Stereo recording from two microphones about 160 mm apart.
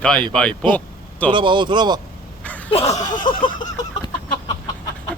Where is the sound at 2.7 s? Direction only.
35° left (ahead or behind).